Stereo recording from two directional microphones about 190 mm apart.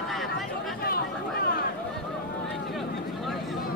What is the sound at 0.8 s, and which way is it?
Chatter, 55° left (ahead or behind).